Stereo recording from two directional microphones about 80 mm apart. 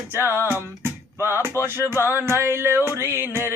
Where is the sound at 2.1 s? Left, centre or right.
Right.